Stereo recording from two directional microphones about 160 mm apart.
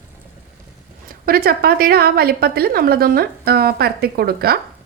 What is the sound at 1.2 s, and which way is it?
A woman's voice, 70° right (ahead or behind).